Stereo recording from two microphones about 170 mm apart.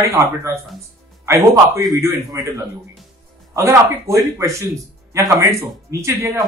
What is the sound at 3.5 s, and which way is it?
Speech, 20° right (ahead or behind).